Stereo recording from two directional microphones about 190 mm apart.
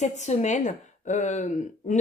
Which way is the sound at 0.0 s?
35° left (ahead or behind).